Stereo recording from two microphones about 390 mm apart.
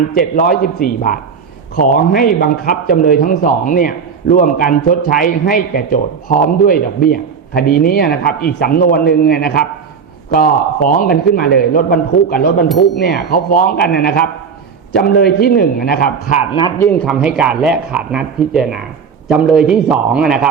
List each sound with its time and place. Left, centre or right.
0.1 s speech: left
16.6 s speech: centre